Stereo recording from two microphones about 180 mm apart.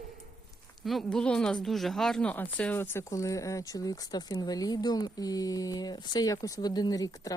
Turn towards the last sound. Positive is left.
turn(degrees=20)  # may be behind; listen again after turning